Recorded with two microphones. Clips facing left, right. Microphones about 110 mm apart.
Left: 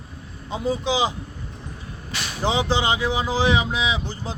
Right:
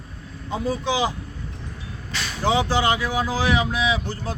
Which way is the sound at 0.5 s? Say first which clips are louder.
Left 1 dB; 20° left (ahead or behind).